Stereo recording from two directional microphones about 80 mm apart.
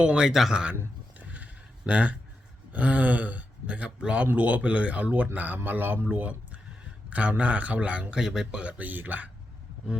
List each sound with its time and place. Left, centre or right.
0.0 s speech: centre
1.2 s a sound: centre
1.9 s speech: centre